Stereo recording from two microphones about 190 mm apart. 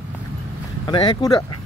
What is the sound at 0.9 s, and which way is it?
Speech, 25° left (ahead or behind).